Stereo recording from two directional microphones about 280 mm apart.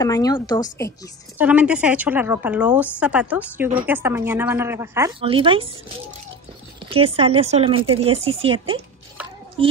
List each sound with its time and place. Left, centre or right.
0.0 s a woman's voice: centre
1.4 s a woman's voice: centre
6.9 s speech: centre